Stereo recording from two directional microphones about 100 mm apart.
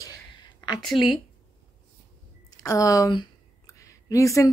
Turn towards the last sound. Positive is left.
turn(degrees=30)  # may be behind; listen again after turning